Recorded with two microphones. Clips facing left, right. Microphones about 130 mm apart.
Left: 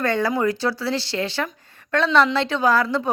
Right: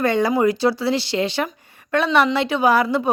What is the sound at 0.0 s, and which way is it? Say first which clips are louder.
A woman's voice: right 3 dB; 15° right (ahead or behind).